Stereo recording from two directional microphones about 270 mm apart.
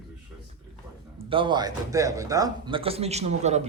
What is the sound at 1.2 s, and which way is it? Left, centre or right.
Speech, centre.